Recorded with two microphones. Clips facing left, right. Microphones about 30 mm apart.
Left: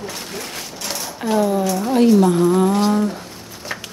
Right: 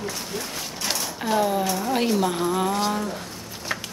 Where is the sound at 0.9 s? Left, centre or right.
Centre.